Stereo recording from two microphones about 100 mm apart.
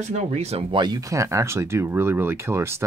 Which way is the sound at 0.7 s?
40° right (ahead or behind).